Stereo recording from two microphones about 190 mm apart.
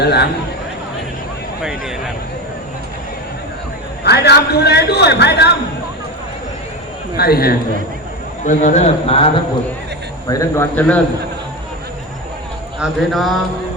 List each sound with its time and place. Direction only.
0.0 s a man's voice: 60° left (ahead or behind)
4.0 s a man's voice: 60° left (ahead or behind)
7.2 s a man's voice: 55° left (ahead or behind)
8.4 s a man's voice: 40° left (ahead or behind)
10.2 s a man's voice: 20° left (ahead or behind)
10.8 s a man's voice: 5° left (ahead or behind)
12.8 s speech: centre (ahead or behind)